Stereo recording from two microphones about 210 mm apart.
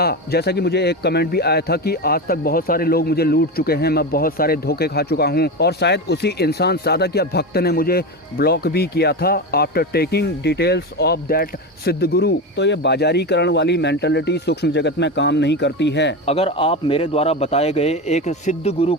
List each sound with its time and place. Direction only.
0.0 s a man's voice: 50° left (ahead or behind)
16.2 s a man's voice: 30° left (ahead or behind)